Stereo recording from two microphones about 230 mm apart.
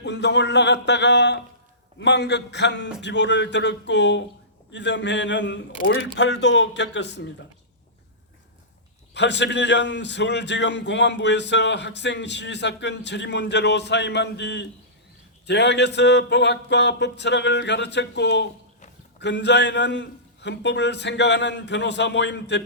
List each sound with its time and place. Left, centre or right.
0.0 s a man's voice: left
9.1 s a man's voice: left